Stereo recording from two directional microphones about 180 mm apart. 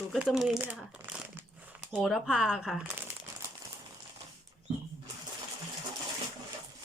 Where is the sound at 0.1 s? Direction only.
Centre (ahead or behind).